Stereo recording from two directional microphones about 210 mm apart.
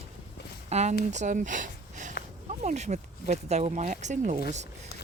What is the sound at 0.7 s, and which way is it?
Speech, 30° right (ahead or behind).